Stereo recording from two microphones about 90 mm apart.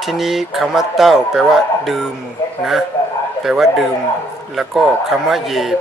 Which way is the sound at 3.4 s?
5° right (ahead or behind).